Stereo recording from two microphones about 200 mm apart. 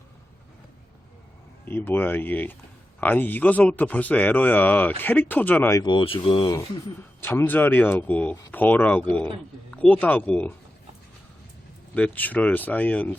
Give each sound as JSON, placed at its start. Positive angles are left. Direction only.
{"t": 1.6, "sound": "speech", "side_deg": 10}
{"t": 7.2, "sound": "speech", "side_deg": 10}
{"t": 11.9, "sound": "speech", "side_deg": 5}